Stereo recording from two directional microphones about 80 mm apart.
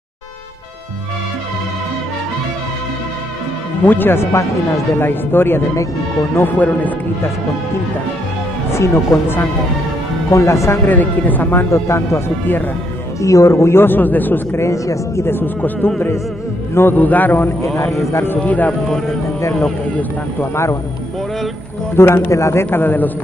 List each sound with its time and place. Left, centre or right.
3.8 s speech: left
8.7 s speech: left
10.3 s speech: left
10.9 s speech: left
11.7 s speech: left
13.2 s speech: left
14.6 s speech: left
15.2 s speech: left
18.4 s speech: centre
21.9 s speech: left